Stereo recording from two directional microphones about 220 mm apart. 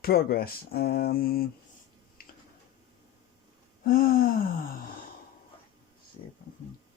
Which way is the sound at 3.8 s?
40° left (ahead or behind).